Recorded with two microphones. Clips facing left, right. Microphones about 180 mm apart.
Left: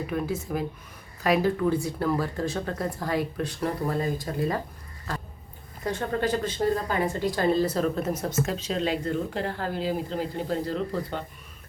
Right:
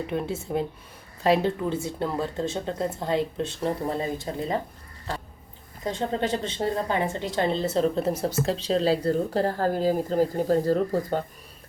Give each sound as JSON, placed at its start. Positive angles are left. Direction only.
{"t": 0.1, "sound": "speech", "side_deg": -25}
{"t": 5.8, "sound": "a woman's voice", "side_deg": -20}